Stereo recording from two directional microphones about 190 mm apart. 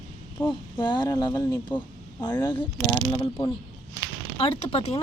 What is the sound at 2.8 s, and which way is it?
Speech, 10° left (ahead or behind).